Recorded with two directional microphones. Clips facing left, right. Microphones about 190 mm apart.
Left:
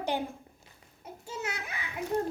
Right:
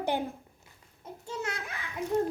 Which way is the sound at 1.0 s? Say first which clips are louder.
Right 2 dB; 5° left (ahead or behind).